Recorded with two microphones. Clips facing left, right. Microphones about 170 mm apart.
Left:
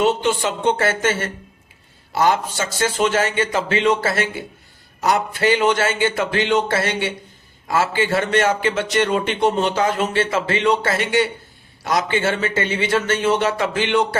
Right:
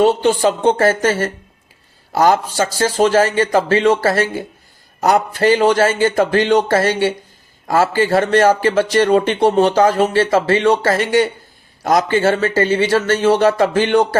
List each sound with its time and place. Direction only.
0.0 s a man's voice: 35° right (ahead or behind)